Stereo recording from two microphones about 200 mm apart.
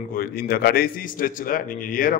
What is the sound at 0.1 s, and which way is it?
A man's voice, 50° left (ahead or behind).